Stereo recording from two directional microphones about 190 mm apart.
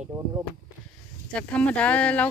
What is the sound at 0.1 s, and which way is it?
Speech, 20° right (ahead or behind).